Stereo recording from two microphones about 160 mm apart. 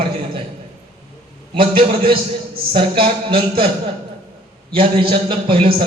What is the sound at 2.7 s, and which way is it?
A man's voice, 35° right (ahead or behind).